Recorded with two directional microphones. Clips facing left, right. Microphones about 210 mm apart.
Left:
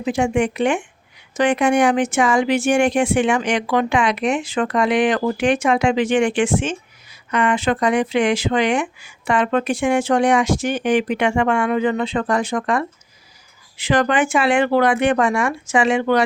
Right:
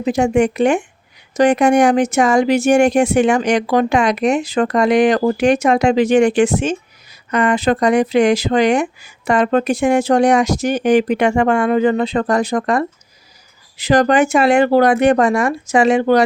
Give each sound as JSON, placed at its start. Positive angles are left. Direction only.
{"t": 0.0, "sound": "speech", "side_deg": -40}